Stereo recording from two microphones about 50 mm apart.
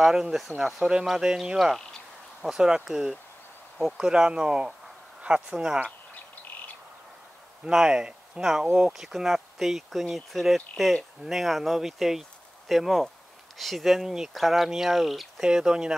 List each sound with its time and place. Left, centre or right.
0.0 s speech: centre
7.6 s speech: centre